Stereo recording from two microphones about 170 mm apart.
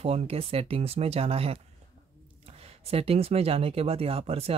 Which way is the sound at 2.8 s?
35° right (ahead or behind).